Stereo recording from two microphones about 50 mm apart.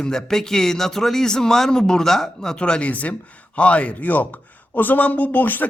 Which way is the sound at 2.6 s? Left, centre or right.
Left.